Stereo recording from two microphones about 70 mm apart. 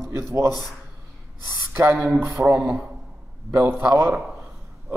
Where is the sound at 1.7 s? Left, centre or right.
Right.